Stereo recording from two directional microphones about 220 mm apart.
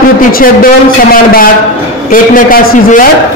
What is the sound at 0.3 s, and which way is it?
A man's voice, 40° left (ahead or behind).